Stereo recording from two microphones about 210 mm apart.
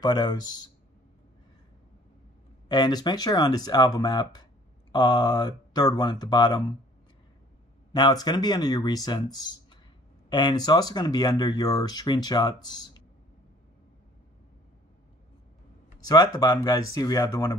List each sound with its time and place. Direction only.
0.0 s speech: 20° left (ahead or behind)
2.7 s speech: 20° left (ahead or behind)
7.9 s speech: 20° left (ahead or behind)
16.1 s speech: 20° left (ahead or behind)